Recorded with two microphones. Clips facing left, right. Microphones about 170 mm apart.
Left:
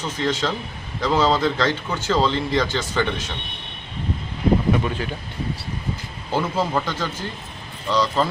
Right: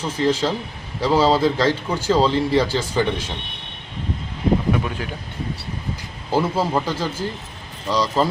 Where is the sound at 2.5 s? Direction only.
10° right (ahead or behind).